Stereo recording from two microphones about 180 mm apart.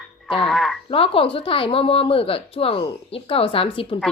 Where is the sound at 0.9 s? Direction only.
30° left (ahead or behind).